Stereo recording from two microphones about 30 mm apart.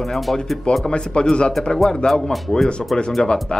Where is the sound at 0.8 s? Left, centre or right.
Left.